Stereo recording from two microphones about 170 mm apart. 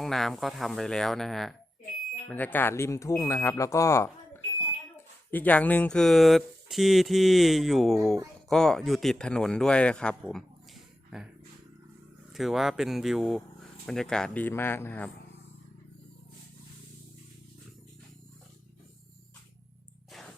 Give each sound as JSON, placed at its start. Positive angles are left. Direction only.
{"t": 0.0, "sound": "speech", "side_deg": 0}
{"t": 5.3, "sound": "speech", "side_deg": 10}
{"t": 12.3, "sound": "speech", "side_deg": 0}